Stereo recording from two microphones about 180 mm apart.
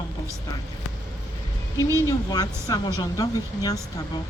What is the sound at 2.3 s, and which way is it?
Speech, 20° left (ahead or behind).